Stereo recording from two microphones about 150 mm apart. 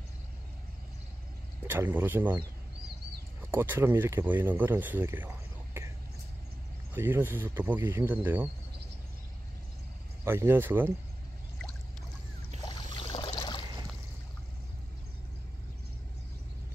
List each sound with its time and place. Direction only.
1.7 s speech: 15° right (ahead or behind)
3.5 s speech: 15° right (ahead or behind)
6.9 s speech: 15° right (ahead or behind)
10.2 s speech: 15° right (ahead or behind)
12.6 s boat: 30° left (ahead or behind)